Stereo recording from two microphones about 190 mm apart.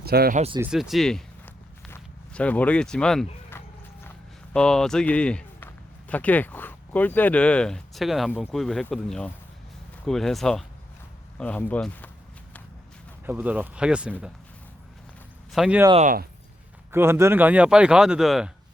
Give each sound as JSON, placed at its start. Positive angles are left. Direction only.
{"t": 0.0, "sound": "speech", "side_deg": -55}
{"t": 0.3, "sound": "speech", "side_deg": -30}
{"t": 0.6, "sound": "speech", "side_deg": 0}
{"t": 3.5, "sound": "walk", "side_deg": 10}
{"t": 4.5, "sound": "a man's voice", "side_deg": 5}
{"t": 13.2, "sound": "speech", "side_deg": -10}
{"t": 15.5, "sound": "speech", "side_deg": -5}
{"t": 16.9, "sound": "speech", "side_deg": -15}